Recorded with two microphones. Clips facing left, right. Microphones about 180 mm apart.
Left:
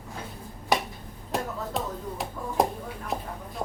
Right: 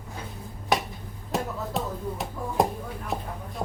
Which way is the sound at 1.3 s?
Centre (ahead or behind).